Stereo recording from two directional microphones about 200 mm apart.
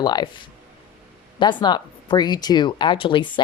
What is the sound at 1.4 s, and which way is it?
Speech, 25° left (ahead or behind).